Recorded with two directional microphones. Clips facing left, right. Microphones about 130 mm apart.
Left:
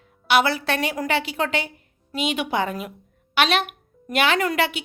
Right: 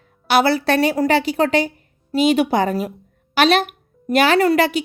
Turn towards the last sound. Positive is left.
turn(degrees=-40)  # may be behind; listen again after turning